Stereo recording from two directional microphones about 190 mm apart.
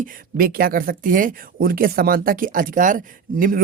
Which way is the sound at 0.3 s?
50° right (ahead or behind).